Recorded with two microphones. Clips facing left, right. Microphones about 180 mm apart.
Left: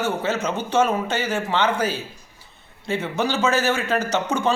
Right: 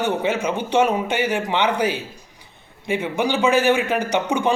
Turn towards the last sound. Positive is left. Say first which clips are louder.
# right 2 dB
turn(degrees=-15)  # may be behind; listen again after turning